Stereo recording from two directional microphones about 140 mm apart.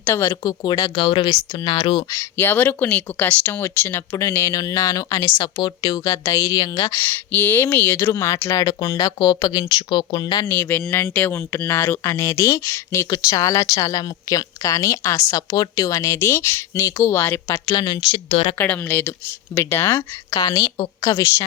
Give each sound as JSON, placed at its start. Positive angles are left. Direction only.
{"t": 0.0, "sound": "speech", "side_deg": 20}
{"t": 2.4, "sound": "speech", "side_deg": 15}
{"t": 7.0, "sound": "speech", "side_deg": 15}
{"t": 10.4, "sound": "speech", "side_deg": 15}
{"t": 17.7, "sound": "speech", "side_deg": 30}
{"t": 18.3, "sound": "speech", "side_deg": 40}
{"t": 18.5, "sound": "speech", "side_deg": 10}